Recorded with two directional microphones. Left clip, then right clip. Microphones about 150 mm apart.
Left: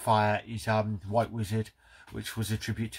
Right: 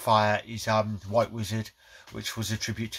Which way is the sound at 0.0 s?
15° right (ahead or behind).